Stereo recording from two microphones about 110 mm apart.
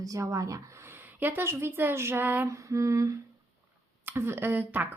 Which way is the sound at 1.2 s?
20° right (ahead or behind).